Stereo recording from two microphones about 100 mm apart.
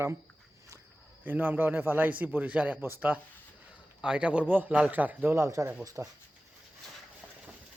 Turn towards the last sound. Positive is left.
turn(degrees=-20)  # may be behind; listen again after turning